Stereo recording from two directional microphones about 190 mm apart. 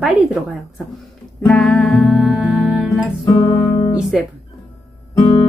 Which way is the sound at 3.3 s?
15° left (ahead or behind).